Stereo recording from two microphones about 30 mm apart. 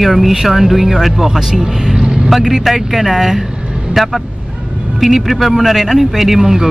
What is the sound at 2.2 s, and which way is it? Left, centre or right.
A man's voice, centre.